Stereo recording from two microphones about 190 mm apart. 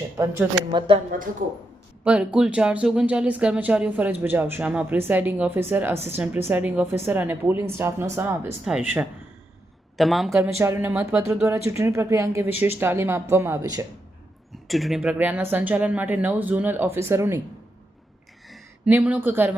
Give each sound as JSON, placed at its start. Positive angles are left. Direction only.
{"t": 0.2, "sound": "speech", "side_deg": -20}
{"t": 2.0, "sound": "speech", "side_deg": -5}
{"t": 14.7, "sound": "speech", "side_deg": 0}
{"t": 18.4, "sound": "a sound", "side_deg": 0}
{"t": 18.9, "sound": "speech", "side_deg": -10}